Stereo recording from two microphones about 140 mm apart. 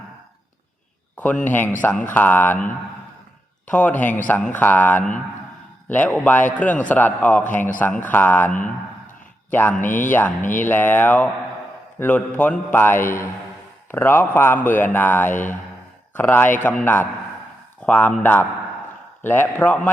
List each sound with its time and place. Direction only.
1.1 s speech: 10° left (ahead or behind)